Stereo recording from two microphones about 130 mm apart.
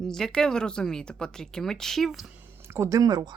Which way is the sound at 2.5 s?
20° right (ahead or behind).